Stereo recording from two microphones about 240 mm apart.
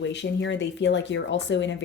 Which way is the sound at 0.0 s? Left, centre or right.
Left.